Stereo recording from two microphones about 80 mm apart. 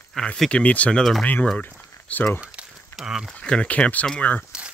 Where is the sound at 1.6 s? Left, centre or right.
Left.